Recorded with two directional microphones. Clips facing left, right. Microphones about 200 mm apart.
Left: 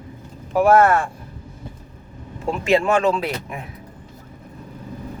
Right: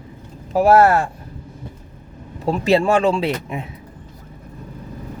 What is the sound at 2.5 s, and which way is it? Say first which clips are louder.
Speech: right 2 dB; 35° right (ahead or behind).